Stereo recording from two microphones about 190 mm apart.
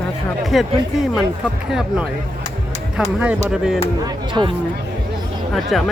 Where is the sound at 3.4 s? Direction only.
5° right (ahead or behind).